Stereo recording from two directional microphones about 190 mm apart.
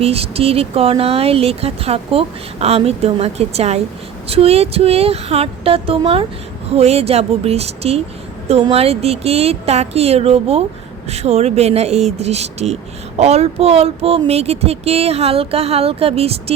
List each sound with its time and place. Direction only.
0.0 s speech: 30° right (ahead or behind)